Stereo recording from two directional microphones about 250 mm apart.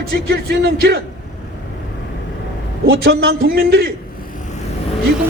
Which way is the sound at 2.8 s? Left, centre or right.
Right.